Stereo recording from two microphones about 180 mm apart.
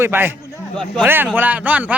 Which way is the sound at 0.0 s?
10° right (ahead or behind).